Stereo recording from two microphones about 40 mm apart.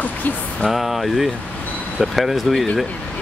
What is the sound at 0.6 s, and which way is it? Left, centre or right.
Speech, centre.